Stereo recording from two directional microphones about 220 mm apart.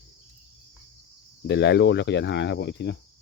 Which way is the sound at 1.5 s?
50° left (ahead or behind).